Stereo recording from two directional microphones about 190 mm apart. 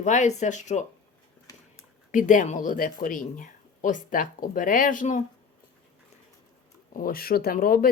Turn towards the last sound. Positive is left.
turn(degrees=50)  # may be behind; listen again after turning